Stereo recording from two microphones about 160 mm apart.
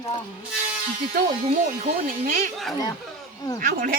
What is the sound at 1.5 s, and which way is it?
Speech, 60° right (ahead or behind).